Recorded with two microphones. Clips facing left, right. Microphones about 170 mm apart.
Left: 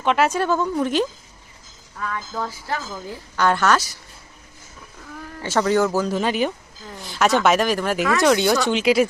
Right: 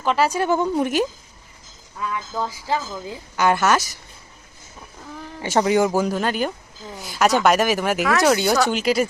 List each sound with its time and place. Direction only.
0.0 s speech: centre (ahead or behind)
0.3 s a woman's voice: 15° right (ahead or behind)
2.4 s a woman's voice: 15° right (ahead or behind)
5.4 s a woman's voice: 15° right (ahead or behind)
6.1 s speech: centre (ahead or behind)